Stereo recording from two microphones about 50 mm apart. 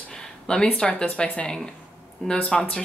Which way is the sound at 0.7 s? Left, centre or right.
Centre.